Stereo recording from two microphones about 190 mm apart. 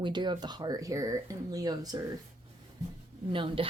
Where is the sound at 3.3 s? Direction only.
25° right (ahead or behind).